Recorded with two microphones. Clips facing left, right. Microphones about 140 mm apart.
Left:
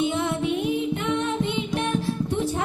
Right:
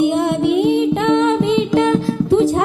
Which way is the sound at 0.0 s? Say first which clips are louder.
Right 9 dB; 60° right (ahead or behind).